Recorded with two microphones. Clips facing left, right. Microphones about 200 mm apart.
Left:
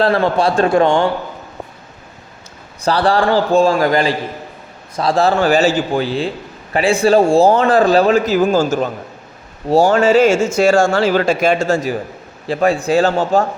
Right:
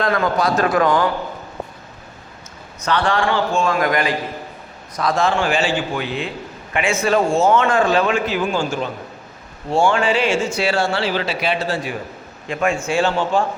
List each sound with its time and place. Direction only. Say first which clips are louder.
0.0 s a man's voice: left 5 dB; 30° left (ahead or behind)
2.8 s speech: left 5 dB; 35° left (ahead or behind)